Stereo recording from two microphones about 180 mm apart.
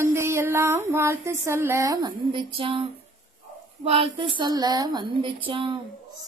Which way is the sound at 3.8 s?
30° right (ahead or behind).